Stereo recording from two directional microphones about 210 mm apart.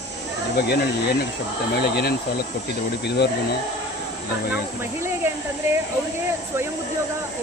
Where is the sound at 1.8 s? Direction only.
50° left (ahead or behind).